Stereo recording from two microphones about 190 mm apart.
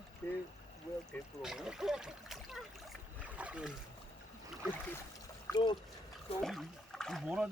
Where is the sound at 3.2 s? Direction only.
5° right (ahead or behind).